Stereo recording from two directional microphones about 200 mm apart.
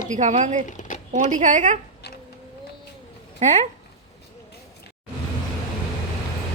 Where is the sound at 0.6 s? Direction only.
40° left (ahead or behind).